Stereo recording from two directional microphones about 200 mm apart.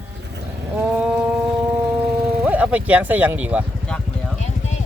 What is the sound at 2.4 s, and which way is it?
Speech, 5° right (ahead or behind).